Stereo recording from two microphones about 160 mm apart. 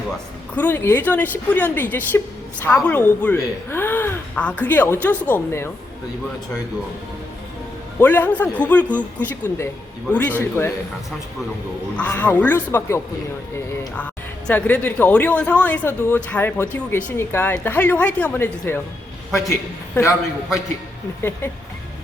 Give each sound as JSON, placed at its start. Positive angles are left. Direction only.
{"t": 0.5, "sound": "speech", "side_deg": 10}
{"t": 7.9, "sound": "speech", "side_deg": 10}
{"t": 11.9, "sound": "a man's voice", "side_deg": 10}
{"t": 21.2, "sound": "speech", "side_deg": 15}